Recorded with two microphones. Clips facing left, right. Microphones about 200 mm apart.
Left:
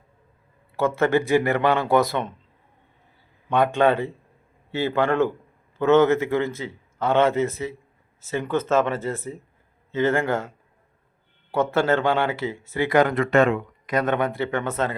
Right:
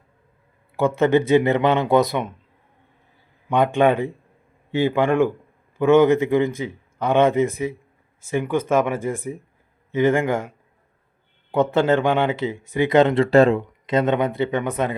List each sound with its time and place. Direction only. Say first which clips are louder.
0.8 s speech: right 3 dB; 15° right (ahead or behind)
3.5 s speech: right 2 dB; 15° right (ahead or behind)
11.5 s speech: right 3 dB; 15° right (ahead or behind)